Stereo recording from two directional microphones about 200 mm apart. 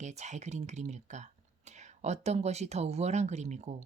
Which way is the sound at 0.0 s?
35° right (ahead or behind).